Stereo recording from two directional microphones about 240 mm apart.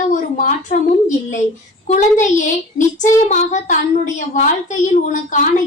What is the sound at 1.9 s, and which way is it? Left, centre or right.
A woman's voice, left.